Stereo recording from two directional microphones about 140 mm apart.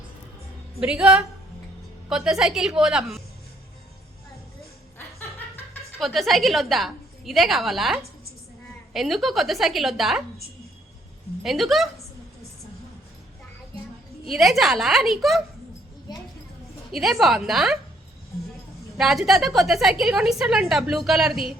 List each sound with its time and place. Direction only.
0.8 s a woman's voice: 5° right (ahead or behind)
5.4 s chuckle: 15° left (ahead or behind)
6.0 s a woman's voice: centre (ahead or behind)
11.4 s a woman's voice: centre (ahead or behind)
14.3 s a woman's voice: centre (ahead or behind)
16.9 s a woman's voice: centre (ahead or behind)
18.9 s a woman's voice: centre (ahead or behind)